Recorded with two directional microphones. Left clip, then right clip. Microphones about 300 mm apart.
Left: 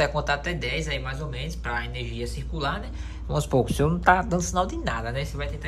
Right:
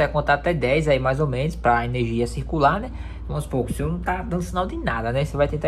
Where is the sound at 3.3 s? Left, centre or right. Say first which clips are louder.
Left 3 dB; centre.